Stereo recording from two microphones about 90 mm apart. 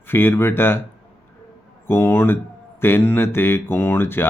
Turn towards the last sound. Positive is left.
turn(degrees=25)  # may be behind; listen again after turning